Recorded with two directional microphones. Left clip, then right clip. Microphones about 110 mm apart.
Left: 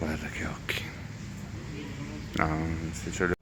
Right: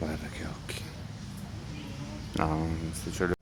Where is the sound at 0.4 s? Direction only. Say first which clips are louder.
Left 7 dB; 10° left (ahead or behind).